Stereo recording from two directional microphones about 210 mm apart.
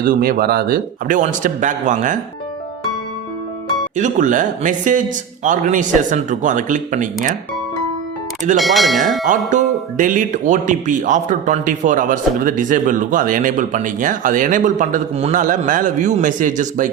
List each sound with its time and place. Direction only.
0.0 s speech: 40° right (ahead or behind)
3.9 s speech: 35° right (ahead or behind)
8.5 s speech: centre (ahead or behind)
9.5 s speech: 40° right (ahead or behind)